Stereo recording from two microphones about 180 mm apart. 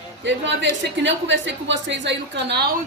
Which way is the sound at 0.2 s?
85° right.